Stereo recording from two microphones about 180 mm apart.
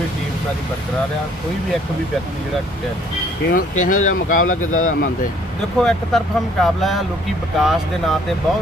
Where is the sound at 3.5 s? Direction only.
50° left (ahead or behind).